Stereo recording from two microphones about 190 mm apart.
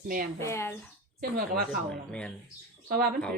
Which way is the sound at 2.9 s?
55° right (ahead or behind).